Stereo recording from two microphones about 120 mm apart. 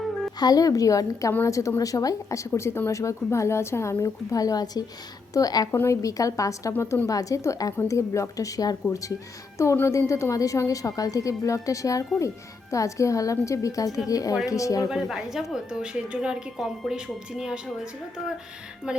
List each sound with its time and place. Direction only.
0.3 s a woman's voice: 30° left (ahead or behind)
14.8 s a woman's voice: 5° right (ahead or behind)
18.8 s speech: 10° right (ahead or behind)